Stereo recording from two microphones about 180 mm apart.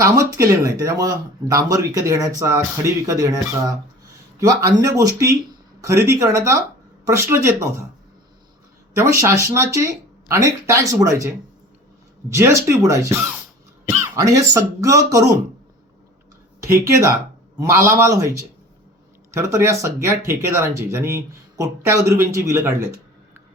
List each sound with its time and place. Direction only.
0.0 s speech: 15° right (ahead or behind)
9.0 s speech: 15° right (ahead or behind)
12.3 s speech: 15° right (ahead or behind)
16.6 s speech: 15° right (ahead or behind)